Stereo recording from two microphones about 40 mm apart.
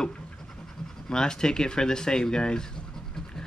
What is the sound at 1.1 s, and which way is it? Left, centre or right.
Speech, centre.